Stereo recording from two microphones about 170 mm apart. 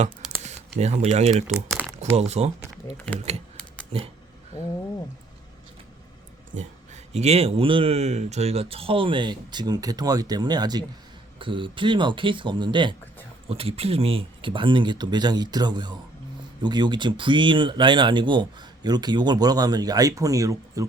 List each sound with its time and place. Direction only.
0.2 s a sound: 5° right (ahead or behind)
0.8 s speech: 40° right (ahead or behind)
1.5 s speech: centre (ahead or behind)
2.0 s speech: 40° right (ahead or behind)
3.9 s speech: 35° right (ahead or behind)
6.5 s speech: 45° right (ahead or behind); by 20.8 s 20° right (ahead or behind)